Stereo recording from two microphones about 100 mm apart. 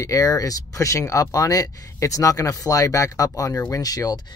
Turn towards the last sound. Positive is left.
turn(degrees=40)  # may be behind; listen again after turning